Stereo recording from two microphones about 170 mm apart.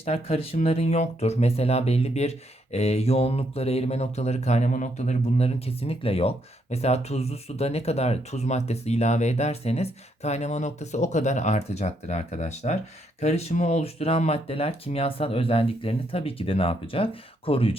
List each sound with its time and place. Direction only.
0.0 s speech: 35° left (ahead or behind)